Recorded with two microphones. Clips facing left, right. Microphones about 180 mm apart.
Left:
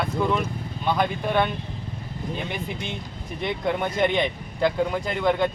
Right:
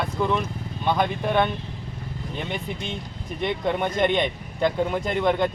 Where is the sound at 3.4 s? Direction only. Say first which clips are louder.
Right 1 dB; 5° left (ahead or behind).